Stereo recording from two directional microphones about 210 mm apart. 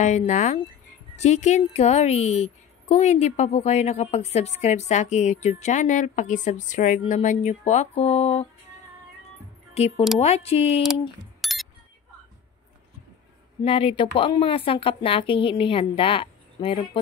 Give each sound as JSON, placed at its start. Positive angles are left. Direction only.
{"t": 0.0, "sound": "a woman's voice", "side_deg": 35}
{"t": 9.8, "sound": "a woman's voice", "side_deg": 30}
{"t": 11.4, "sound": "a sound", "side_deg": 0}
{"t": 13.7, "sound": "speech", "side_deg": 25}